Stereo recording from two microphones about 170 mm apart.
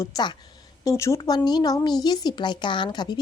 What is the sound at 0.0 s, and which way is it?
Speech, 25° left (ahead or behind).